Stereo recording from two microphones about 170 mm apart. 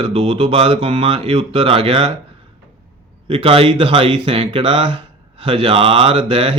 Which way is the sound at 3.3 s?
35° right (ahead or behind).